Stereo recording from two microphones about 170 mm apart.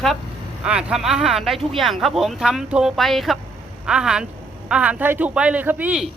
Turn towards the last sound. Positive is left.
turn(degrees=-5)  # may be behind; listen again after turning